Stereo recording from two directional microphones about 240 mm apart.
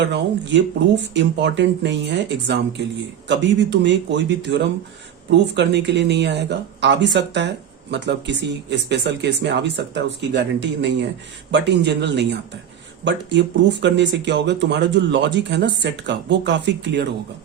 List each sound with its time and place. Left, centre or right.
0.0 s speech: right